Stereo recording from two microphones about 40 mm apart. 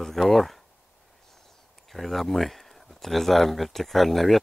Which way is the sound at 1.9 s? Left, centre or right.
Centre.